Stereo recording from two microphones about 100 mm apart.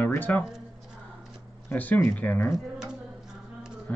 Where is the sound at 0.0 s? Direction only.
15° left (ahead or behind).